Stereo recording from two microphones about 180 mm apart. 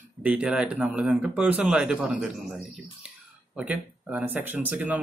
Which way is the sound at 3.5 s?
5° right (ahead or behind).